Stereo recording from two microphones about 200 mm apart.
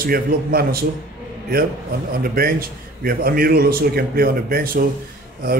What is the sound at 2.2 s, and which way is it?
Speech, 50° right (ahead or behind).